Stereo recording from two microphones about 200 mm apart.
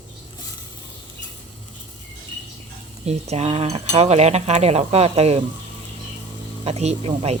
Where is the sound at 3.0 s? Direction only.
30° right (ahead or behind).